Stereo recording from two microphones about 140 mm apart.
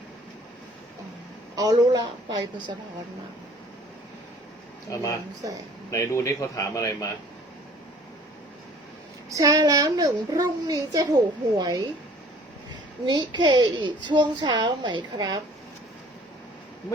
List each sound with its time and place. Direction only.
1.5 s a woman's voice: 25° right (ahead or behind)
4.9 s speech: 25° left (ahead or behind)
9.3 s a woman's voice: 25° right (ahead or behind)
13.1 s a woman's voice: 30° right (ahead or behind)